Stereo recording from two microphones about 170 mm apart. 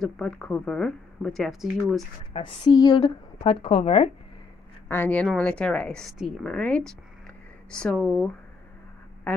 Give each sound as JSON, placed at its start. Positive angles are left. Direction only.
{"t": 0.0, "sound": "a woman's voice", "side_deg": 5}
{"t": 2.3, "sound": "a woman's voice", "side_deg": 30}
{"t": 4.8, "sound": "a woman's voice", "side_deg": 10}